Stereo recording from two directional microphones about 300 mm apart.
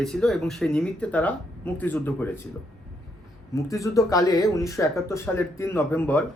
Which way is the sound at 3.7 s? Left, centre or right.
Centre.